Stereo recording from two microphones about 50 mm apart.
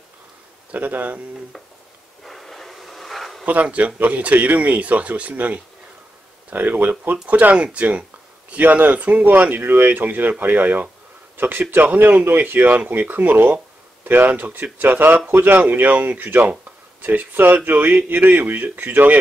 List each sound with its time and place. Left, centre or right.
0.7 s speech: right
2.2 s a sound: centre
3.4 s speech: right
12.7 s speech: right